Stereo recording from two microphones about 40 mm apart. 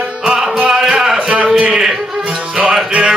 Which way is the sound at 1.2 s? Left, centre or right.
Right.